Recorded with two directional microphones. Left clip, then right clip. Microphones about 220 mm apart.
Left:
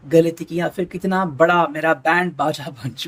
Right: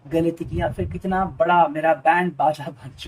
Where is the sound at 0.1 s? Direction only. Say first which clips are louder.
Left 7 dB; 45° left (ahead or behind).